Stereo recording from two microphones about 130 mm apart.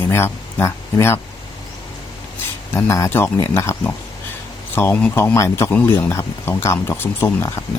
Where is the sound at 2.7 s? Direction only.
25° left (ahead or behind).